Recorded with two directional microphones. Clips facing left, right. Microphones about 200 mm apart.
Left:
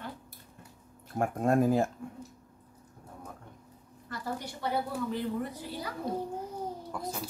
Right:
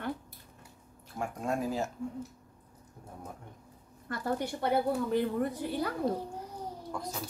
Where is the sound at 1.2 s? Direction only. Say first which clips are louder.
Left 7 dB; 55° left (ahead or behind).